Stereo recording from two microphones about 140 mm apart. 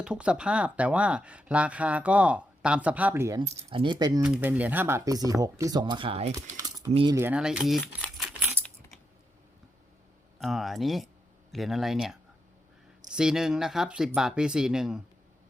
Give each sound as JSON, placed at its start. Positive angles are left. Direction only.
{"t": 0.0, "sound": "speech", "side_deg": -5}
{"t": 3.4, "sound": "speech", "side_deg": -45}
{"t": 4.2, "sound": "speech", "side_deg": -10}
{"t": 7.1, "sound": "speech", "side_deg": -15}
{"t": 7.3, "sound": "speech", "side_deg": -5}
{"t": 8.2, "sound": "a sound", "side_deg": -10}
{"t": 10.4, "sound": "speech", "side_deg": 0}